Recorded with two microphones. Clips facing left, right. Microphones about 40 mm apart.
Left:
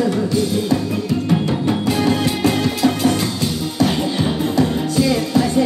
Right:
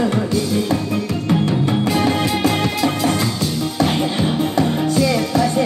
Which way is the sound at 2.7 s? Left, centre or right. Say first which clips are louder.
Left 1 dB; right.